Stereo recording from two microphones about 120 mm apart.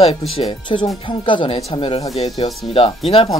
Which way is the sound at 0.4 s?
40° left (ahead or behind).